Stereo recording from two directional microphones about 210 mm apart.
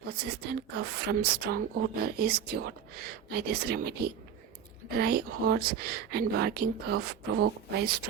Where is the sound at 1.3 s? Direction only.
50° right (ahead or behind).